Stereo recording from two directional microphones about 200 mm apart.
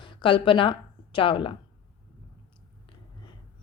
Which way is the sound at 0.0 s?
25° left (ahead or behind).